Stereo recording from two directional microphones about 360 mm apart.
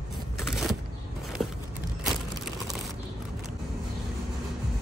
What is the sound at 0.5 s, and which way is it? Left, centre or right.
Vehicle, centre.